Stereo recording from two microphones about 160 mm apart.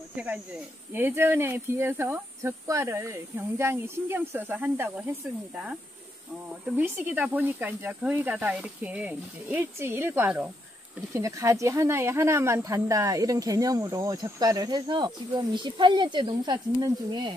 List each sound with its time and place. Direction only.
0.1 s speech: 10° right (ahead or behind)
6.8 s speech: 10° right (ahead or behind)
11.1 s speech: 20° right (ahead or behind)